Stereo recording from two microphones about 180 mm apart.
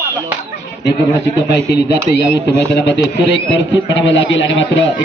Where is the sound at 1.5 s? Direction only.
70° left (ahead or behind); by 4.9 s 90° left.